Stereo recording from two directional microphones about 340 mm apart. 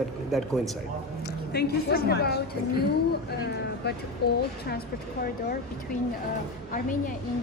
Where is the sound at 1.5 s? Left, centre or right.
Left.